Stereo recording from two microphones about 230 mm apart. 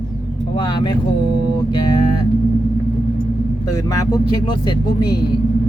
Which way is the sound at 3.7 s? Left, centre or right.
Centre.